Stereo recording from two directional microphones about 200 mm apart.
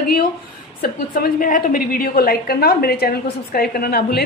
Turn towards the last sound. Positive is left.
turn(degrees=50)  # may be behind; listen again after turning